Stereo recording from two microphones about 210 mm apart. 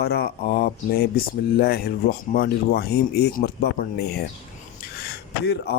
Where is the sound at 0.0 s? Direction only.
50° left (ahead or behind).